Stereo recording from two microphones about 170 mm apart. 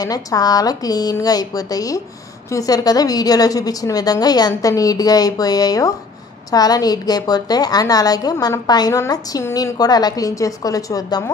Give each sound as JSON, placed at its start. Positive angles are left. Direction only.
{"t": 0.0, "sound": "a woman's voice", "side_deg": 20}